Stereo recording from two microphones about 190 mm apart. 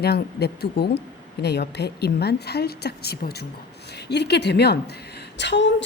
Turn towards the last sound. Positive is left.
turn(degrees=70)  # may be behind; listen again after turning